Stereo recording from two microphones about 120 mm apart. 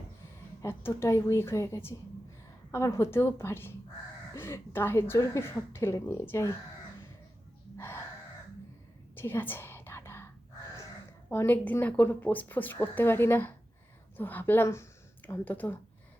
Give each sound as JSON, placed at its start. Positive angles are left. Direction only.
{"t": 0.6, "sound": "speech", "side_deg": 20}
{"t": 7.8, "sound": "a sound", "side_deg": 20}
{"t": 9.1, "sound": "whispering", "side_deg": 20}
{"t": 11.3, "sound": "speech", "side_deg": 15}